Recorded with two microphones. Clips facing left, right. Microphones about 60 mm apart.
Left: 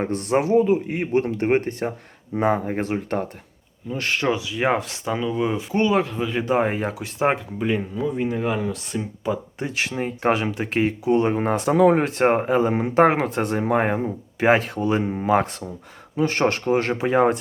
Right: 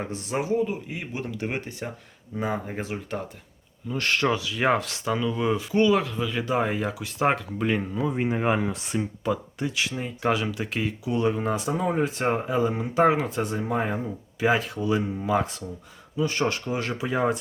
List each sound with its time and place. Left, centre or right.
0.0 s speech: left
1.3 s speech: left
3.9 s speech: left
5.7 s speech: left
7.6 s speech: centre
8.1 s speech: right
8.6 s speech: centre
9.2 s speech: centre
9.6 s speech: left
11.7 s speech: left